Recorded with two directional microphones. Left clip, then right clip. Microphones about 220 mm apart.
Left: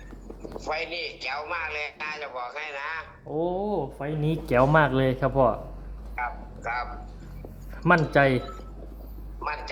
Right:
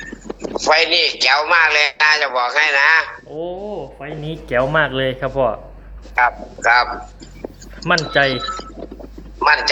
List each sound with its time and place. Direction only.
0.0 s a man's voice: 40° right (ahead or behind)
3.3 s speech: 25° left (ahead or behind)
6.1 s a man's voice: 40° right (ahead or behind)
7.9 s speech: 10° left (ahead or behind)
8.3 s speech: 40° right (ahead or behind)